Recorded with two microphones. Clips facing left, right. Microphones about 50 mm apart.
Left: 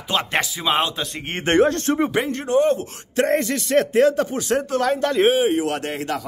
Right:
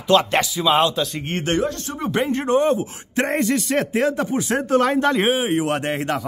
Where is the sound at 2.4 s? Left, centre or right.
Right.